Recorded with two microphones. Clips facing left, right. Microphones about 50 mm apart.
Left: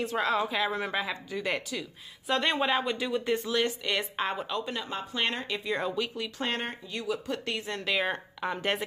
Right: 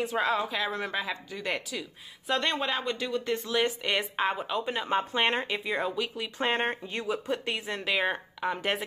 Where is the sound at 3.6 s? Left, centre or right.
Centre.